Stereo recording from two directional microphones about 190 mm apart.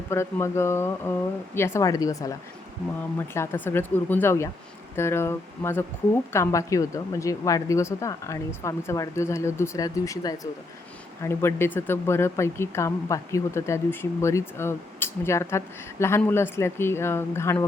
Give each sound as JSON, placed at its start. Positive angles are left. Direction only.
{"t": 0.1, "sound": "speech", "side_deg": 15}